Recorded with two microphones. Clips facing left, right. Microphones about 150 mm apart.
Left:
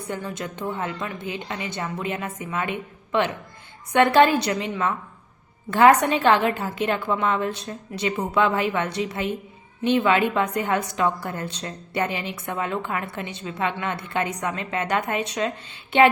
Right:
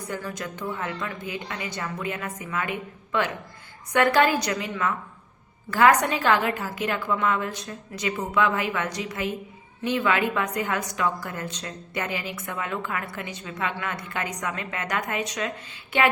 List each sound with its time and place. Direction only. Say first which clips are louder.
0.1 s a woman's voice: left 3 dB; 25° left (ahead or behind)